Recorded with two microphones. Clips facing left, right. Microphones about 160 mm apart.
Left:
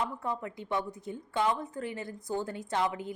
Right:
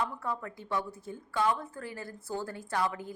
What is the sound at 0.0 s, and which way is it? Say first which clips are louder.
A woman's voice: left 1 dB; 20° left (ahead or behind).